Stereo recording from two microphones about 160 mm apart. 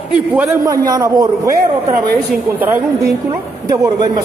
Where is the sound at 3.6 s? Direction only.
20° right (ahead or behind).